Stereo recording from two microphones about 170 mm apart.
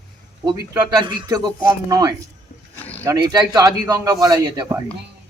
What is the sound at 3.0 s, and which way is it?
A man's voice, 20° right (ahead or behind).